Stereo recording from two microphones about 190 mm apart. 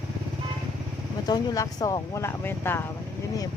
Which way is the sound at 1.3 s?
20° left (ahead or behind).